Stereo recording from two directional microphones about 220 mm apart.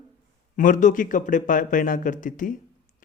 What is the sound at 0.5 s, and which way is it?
Speech, 35° left (ahead or behind).